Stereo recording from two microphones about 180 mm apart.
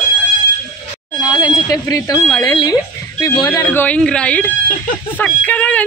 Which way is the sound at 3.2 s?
20° left (ahead or behind).